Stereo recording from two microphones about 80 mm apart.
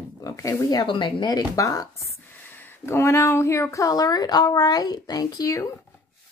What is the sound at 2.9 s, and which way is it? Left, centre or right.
Speech, left.